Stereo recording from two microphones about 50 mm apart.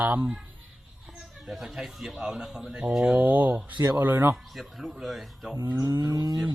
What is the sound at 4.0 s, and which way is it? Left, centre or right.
Speech, right.